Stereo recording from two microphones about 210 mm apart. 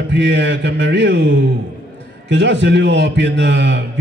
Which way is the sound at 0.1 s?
55° right (ahead or behind).